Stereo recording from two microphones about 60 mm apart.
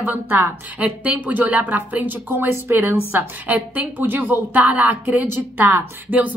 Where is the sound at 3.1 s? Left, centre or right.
Right.